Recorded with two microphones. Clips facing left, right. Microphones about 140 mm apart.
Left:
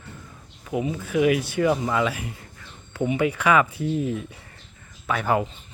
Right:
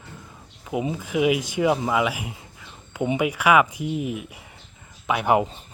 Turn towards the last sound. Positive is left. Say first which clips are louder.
# right 3 dB
turn(degrees=-15)  # may be behind; listen again after turning